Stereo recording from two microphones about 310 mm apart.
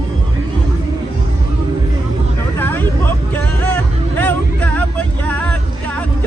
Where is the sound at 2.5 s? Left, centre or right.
Centre.